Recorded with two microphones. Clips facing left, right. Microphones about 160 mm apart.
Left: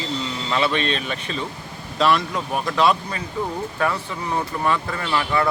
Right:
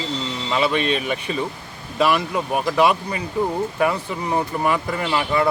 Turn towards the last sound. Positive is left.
turn(degrees=-20)  # may be behind; listen again after turning